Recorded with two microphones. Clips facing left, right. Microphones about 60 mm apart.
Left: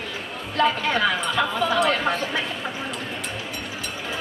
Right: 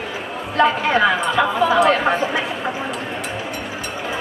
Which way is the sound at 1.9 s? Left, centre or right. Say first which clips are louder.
Right 6 dB; centre.